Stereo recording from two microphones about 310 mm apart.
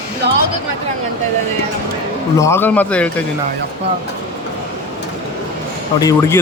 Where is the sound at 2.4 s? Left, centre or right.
Centre.